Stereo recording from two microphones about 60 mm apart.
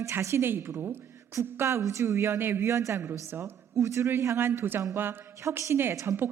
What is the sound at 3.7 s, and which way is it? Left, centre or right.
Speech, right.